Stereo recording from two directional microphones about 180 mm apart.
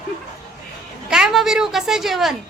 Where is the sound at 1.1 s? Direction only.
Centre (ahead or behind).